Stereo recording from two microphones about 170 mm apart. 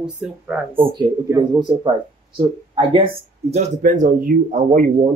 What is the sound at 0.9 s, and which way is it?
Speech, 25° right (ahead or behind).